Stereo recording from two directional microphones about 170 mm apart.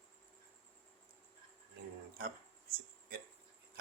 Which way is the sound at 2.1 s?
60° right (ahead or behind).